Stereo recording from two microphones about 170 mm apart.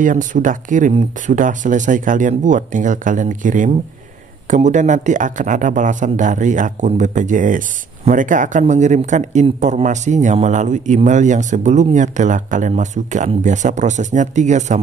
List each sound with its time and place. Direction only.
0.0 s speech: 50° right (ahead or behind)